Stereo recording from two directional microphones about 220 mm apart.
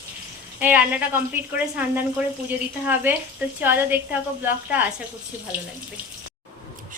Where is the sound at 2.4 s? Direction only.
10° right (ahead or behind).